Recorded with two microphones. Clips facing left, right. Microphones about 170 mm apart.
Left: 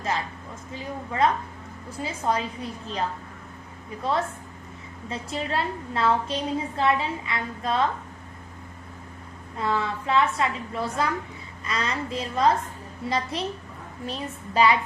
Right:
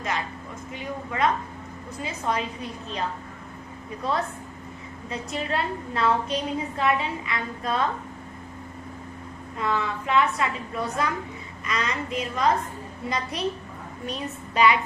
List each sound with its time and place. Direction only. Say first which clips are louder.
0.7 s a woman's voice: even; 30° left (ahead or behind)
4.0 s a woman's voice: left 1 dB; 25° left (ahead or behind)
9.6 s a woman's voice: even; 30° left (ahead or behind)